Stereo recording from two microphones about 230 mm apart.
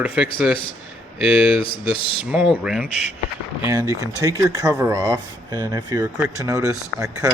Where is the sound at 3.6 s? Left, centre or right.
Centre.